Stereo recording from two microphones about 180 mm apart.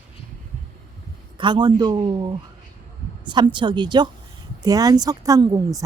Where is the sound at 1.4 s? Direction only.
25° right (ahead or behind).